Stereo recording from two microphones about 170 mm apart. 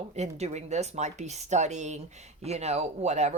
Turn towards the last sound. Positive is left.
turn(degrees=-40)  # may be behind; listen again after turning